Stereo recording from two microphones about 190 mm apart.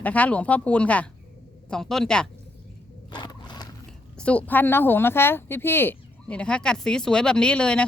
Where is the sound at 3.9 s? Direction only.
5° left (ahead or behind).